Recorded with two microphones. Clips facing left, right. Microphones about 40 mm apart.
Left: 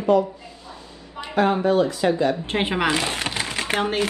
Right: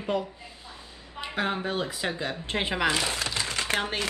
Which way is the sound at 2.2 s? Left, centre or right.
Left.